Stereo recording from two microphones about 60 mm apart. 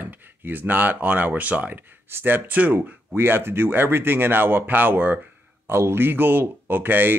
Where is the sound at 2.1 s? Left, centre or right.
Right.